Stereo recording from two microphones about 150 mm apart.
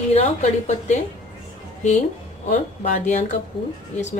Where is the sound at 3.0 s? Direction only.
55° left (ahead or behind).